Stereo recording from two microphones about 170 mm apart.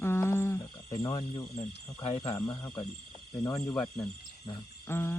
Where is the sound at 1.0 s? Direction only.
20° left (ahead or behind).